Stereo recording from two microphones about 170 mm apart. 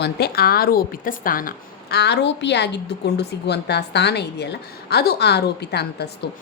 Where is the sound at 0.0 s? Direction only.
70° left (ahead or behind).